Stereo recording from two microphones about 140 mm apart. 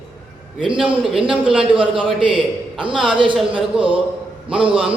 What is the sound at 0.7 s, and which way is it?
Speech, 5° right (ahead or behind).